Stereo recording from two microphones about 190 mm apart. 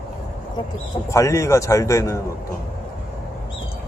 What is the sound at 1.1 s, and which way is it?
A man's voice, 15° left (ahead or behind).